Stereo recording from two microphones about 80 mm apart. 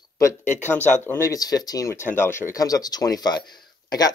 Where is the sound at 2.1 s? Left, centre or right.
Left.